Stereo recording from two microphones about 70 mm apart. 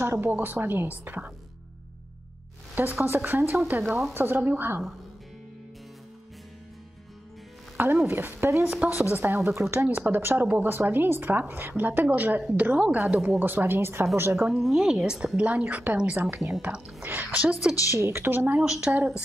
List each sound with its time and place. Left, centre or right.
0.0 s speech: right
2.7 s a woman's voice: right
7.7 s speech: right
8.6 s speech: centre
9.1 s speech: right
14.5 s speech: centre
15.4 s speech: centre
17.9 s speech: right
18.6 s speech: centre